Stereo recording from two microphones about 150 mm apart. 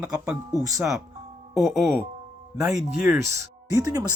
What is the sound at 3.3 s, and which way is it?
Speech, 20° right (ahead or behind).